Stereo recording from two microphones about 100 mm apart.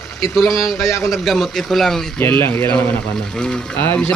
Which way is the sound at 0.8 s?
30° left (ahead or behind).